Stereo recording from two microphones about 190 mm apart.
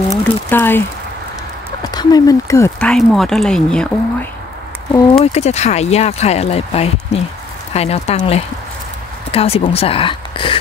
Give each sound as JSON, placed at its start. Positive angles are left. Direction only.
{"t": 0.1, "sound": "a sound", "side_deg": 10}
{"t": 1.9, "sound": "speech", "side_deg": 20}
{"t": 2.8, "sound": "speech", "side_deg": 5}
{"t": 5.2, "sound": "speech", "side_deg": 35}